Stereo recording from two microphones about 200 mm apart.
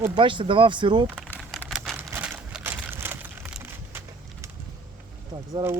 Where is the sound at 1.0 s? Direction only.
5° left (ahead or behind).